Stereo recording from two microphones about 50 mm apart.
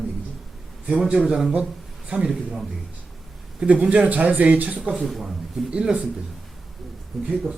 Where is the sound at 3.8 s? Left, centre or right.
Right.